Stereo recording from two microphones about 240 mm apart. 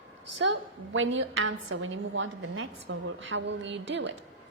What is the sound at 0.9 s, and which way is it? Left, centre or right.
A woman's voice, right.